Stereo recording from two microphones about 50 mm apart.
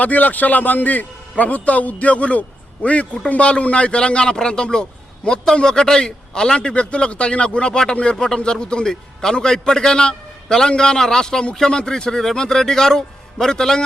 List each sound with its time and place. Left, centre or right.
0.0 s a man's voice: left; by 13.8 s centre